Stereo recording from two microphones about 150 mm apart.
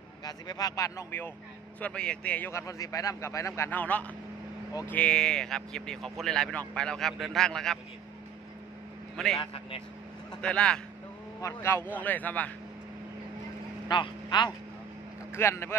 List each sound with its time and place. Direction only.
0.2 s a man's voice: 25° left (ahead or behind); by 7.8 s 5° left (ahead or behind)
9.1 s a man's voice: centre (ahead or behind)
9.4 s a man's voice: 40° left (ahead or behind)
10.4 s a man's voice: 5° left (ahead or behind)
13.8 s speech: 30° left (ahead or behind)
15.3 s a man's voice: 15° left (ahead or behind)